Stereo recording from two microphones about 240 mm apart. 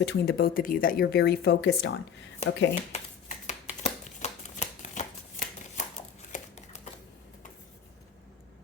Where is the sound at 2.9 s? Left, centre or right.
Left.